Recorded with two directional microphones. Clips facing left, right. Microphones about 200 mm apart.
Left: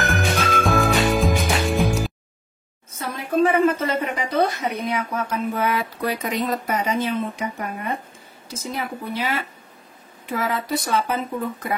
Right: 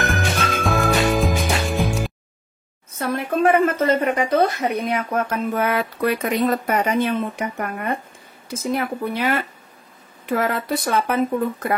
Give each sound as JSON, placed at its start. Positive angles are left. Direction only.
{"t": 0.0, "sound": "music", "side_deg": 0}
{"t": 3.0, "sound": "a woman's voice", "side_deg": -55}